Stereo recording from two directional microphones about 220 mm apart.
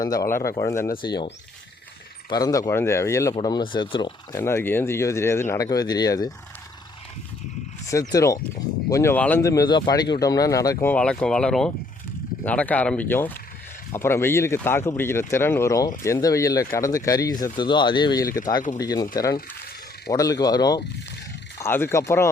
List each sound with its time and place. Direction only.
0.0 s speech: 15° left (ahead or behind)
2.3 s speech: 15° left (ahead or behind)
8.1 s speech: 15° left (ahead or behind)